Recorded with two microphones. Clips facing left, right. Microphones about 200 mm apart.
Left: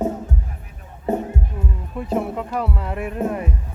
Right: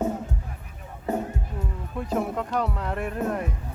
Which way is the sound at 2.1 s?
5° left (ahead or behind).